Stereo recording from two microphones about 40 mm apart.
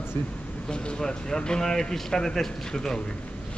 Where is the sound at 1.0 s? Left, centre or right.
Centre.